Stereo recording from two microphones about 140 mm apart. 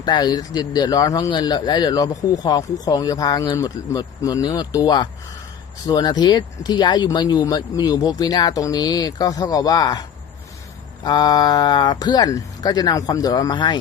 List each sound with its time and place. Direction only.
0.0 s speech: 30° left (ahead or behind)
11.0 s speech: 30° left (ahead or behind)